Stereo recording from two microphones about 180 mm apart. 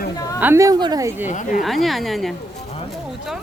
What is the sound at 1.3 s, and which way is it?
Speech, 45° left (ahead or behind).